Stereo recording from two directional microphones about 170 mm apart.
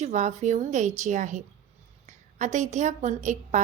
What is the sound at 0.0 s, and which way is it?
A woman's voice, 45° right (ahead or behind).